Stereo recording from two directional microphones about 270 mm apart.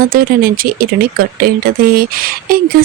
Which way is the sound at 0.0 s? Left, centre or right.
Right.